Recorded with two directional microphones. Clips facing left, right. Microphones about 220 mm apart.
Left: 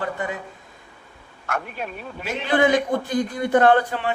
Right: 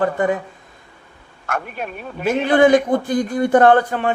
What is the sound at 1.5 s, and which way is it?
A man's voice, 50° right (ahead or behind).